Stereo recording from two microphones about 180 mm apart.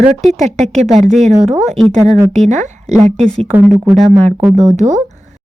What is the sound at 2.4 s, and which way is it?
Speech, 40° right (ahead or behind).